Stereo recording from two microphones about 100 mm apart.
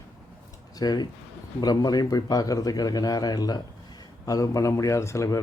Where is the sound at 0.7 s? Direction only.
45° left (ahead or behind).